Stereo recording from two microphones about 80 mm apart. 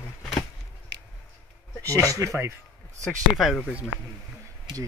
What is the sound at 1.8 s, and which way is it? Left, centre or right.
Speech, right.